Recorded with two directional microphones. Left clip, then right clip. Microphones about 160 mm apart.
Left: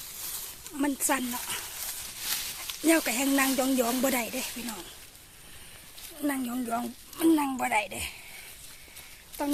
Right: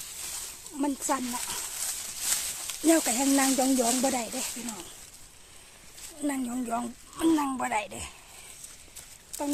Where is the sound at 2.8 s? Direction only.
20° right (ahead or behind).